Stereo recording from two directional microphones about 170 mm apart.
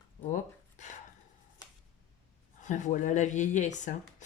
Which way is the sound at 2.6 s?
45° left (ahead or behind).